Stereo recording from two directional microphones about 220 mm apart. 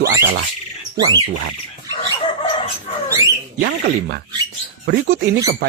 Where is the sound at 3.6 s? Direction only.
40° right (ahead or behind).